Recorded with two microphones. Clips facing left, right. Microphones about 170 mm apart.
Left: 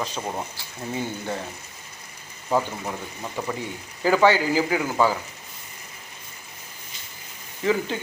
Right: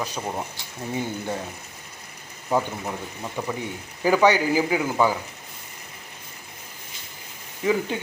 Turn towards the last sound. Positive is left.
turn(degrees=-15)  # may be behind; listen again after turning